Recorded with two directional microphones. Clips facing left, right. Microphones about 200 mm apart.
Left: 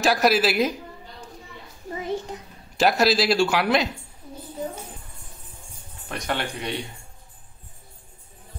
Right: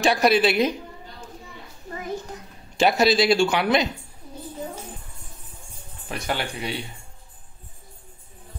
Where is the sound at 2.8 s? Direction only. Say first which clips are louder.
Right 1 dB; centre (ahead or behind).